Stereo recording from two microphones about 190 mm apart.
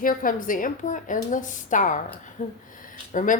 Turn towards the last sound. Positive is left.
turn(degrees=45)  # may be behind; listen again after turning